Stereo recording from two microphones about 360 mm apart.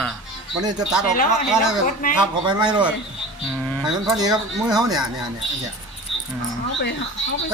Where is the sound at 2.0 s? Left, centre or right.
Left.